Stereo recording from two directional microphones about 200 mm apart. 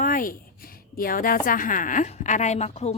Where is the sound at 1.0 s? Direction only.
45° left (ahead or behind).